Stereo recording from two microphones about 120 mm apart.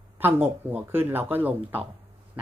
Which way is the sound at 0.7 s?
15° right (ahead or behind).